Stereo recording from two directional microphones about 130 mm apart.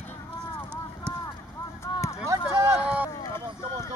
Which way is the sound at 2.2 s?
25° right (ahead or behind).